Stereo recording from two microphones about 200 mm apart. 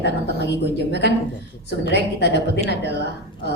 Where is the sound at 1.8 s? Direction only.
60° left (ahead or behind).